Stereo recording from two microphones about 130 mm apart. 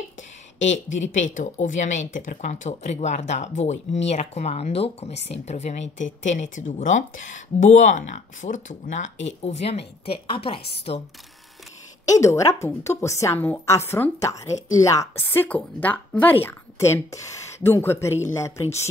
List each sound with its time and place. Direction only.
0.9 s a woman's voice: 70° left (ahead or behind); by 11.0 s 45° left (ahead or behind)
12.1 s a woman's voice: 25° left (ahead or behind)